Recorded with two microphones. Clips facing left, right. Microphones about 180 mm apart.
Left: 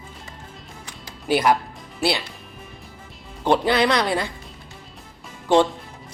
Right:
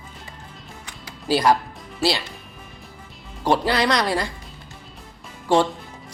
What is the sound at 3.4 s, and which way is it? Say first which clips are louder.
Speech: left 1 dB; centre (ahead or behind).